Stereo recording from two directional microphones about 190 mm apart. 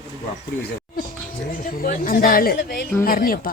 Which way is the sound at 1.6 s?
50° left (ahead or behind).